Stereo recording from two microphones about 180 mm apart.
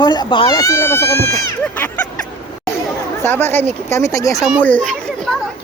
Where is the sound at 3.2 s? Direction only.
10° left (ahead or behind).